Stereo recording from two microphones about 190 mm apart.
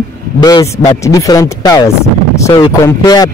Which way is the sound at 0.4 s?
20° left (ahead or behind).